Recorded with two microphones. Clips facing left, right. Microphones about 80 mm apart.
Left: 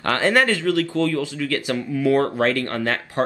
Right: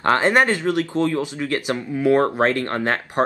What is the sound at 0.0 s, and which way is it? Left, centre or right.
Speech, right.